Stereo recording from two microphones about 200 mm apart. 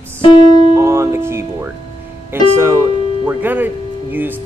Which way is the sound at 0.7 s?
15° right (ahead or behind).